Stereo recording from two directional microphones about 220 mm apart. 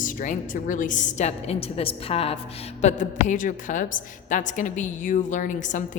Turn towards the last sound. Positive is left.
turn(degrees=35)  # may be behind; listen again after turning